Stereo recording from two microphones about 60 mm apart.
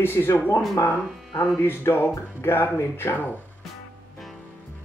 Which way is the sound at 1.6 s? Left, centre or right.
Left.